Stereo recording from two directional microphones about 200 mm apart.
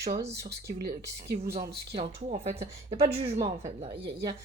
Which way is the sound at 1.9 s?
30° right (ahead or behind).